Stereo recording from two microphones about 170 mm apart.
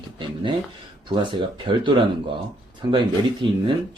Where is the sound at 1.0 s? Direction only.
30° right (ahead or behind).